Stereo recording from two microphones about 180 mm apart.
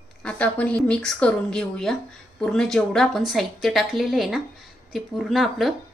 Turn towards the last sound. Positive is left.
turn(degrees=0)  # may be behind; listen again after turning